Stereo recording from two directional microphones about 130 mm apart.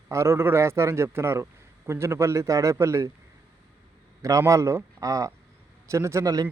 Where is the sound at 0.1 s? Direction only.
20° right (ahead or behind).